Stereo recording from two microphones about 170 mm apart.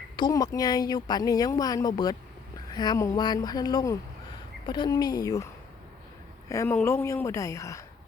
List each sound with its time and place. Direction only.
0.2 s speech: 25° left (ahead or behind)
6.5 s a woman's voice: 15° left (ahead or behind)